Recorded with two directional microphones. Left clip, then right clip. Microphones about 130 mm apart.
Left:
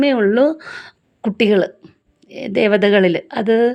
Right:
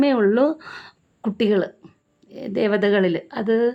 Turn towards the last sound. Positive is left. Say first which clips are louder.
# left 5 dB
turn(degrees=20)  # may be behind; listen again after turning